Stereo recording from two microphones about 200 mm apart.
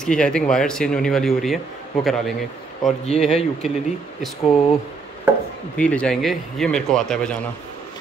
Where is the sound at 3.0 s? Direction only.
30° left (ahead or behind).